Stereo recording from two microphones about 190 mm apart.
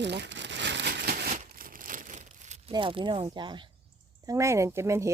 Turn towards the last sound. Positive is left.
turn(degrees=-15)  # may be behind; listen again after turning